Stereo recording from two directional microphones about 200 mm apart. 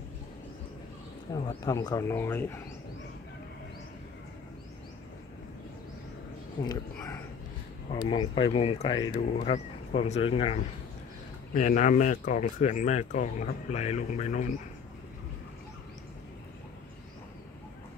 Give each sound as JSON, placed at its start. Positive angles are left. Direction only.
{"t": 1.3, "sound": "speech", "side_deg": 20}
{"t": 7.9, "sound": "speech", "side_deg": 25}